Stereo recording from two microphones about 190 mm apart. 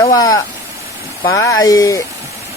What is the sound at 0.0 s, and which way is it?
Speech, 20° left (ahead or behind).